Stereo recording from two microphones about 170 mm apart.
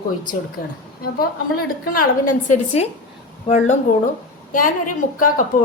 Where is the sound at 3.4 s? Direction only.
45° left (ahead or behind).